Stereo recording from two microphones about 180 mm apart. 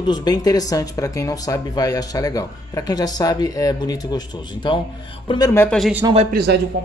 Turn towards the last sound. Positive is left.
turn(degrees=-60)  # may be behind; listen again after turning